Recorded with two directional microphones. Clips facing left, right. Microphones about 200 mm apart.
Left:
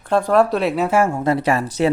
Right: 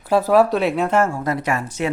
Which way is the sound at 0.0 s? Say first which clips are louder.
Right 1 dB; 5° right (ahead or behind).